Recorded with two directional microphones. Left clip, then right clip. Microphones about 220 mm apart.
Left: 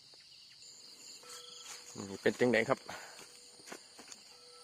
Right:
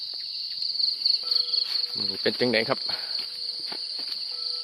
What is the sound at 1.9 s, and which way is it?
Speech, 15° left (ahead or behind).